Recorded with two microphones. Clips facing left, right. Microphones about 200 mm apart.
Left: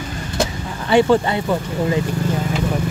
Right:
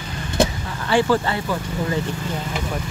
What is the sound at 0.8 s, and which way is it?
Speech, 20° left (ahead or behind).